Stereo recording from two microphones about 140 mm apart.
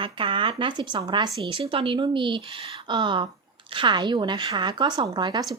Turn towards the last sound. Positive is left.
turn(degrees=-30)  # may be behind; listen again after turning